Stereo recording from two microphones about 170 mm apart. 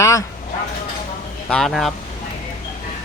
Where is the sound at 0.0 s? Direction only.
20° left (ahead or behind).